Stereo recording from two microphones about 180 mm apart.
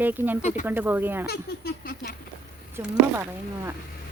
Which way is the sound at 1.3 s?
60° left (ahead or behind).